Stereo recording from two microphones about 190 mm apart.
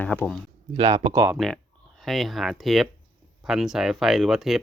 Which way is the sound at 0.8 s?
20° right (ahead or behind).